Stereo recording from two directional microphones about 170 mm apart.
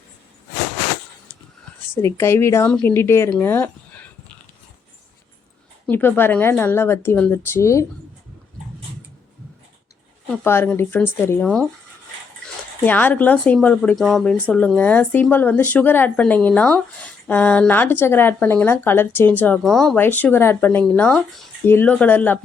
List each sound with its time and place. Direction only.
2.0 s speech: 15° left (ahead or behind)
3.4 s a sound: 10° left (ahead or behind)
5.9 s speech: 10° left (ahead or behind)
10.2 s speech: 15° left (ahead or behind)
12.8 s speech: 10° left (ahead or behind)